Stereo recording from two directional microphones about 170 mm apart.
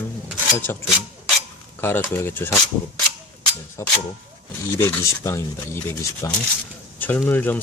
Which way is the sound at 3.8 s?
15° left (ahead or behind).